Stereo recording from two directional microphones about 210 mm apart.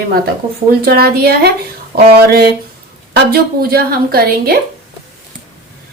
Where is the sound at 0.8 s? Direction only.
45° right (ahead or behind).